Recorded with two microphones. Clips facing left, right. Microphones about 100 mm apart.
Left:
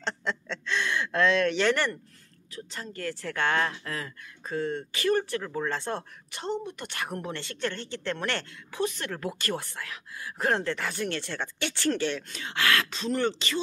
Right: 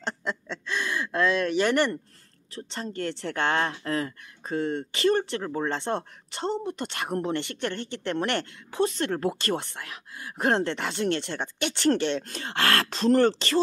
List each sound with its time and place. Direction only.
0.0 s a sound: 10° right (ahead or behind)
2.5 s speech: 30° right (ahead or behind)
12.3 s speech: 40° right (ahead or behind)